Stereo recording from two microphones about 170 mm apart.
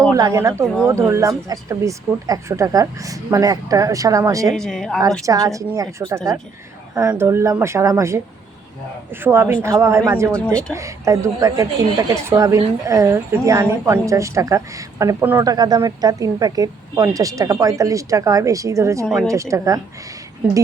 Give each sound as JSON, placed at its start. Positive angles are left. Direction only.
{"t": 0.1, "sound": "speech", "side_deg": -20}
{"t": 4.5, "sound": "speech", "side_deg": 5}
{"t": 5.2, "sound": "a woman's voice", "side_deg": -20}
{"t": 9.2, "sound": "a woman's voice", "side_deg": -15}
{"t": 10.3, "sound": "speech", "side_deg": 5}
{"t": 10.8, "sound": "a woman's voice", "side_deg": -20}
{"t": 15.4, "sound": "speech", "side_deg": -25}